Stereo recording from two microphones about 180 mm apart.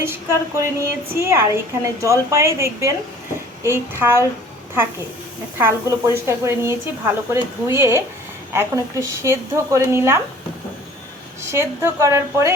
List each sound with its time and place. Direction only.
0.0 s a woman's voice: 15° right (ahead or behind)
5.5 s a woman's voice: 15° right (ahead or behind)
11.4 s a woman's voice: 15° right (ahead or behind)